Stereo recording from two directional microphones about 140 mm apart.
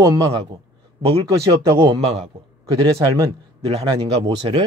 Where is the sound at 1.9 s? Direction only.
50° right (ahead or behind).